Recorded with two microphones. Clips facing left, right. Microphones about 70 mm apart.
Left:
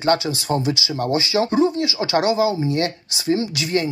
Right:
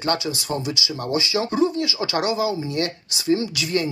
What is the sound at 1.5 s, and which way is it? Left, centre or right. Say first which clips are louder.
Speech: left 3 dB; left.